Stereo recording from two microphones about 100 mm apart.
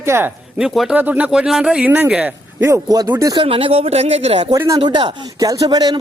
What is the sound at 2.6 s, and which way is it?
Speech, 30° right (ahead or behind).